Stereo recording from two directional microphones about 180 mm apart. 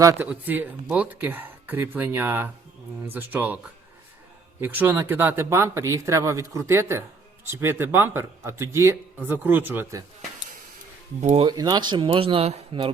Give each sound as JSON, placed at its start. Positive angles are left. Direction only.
{"t": 0.0, "sound": "speech", "side_deg": -15}
{"t": 4.6, "sound": "speech", "side_deg": -10}
{"t": 11.2, "sound": "speech", "side_deg": -40}
{"t": 11.4, "sound": "speech", "side_deg": -25}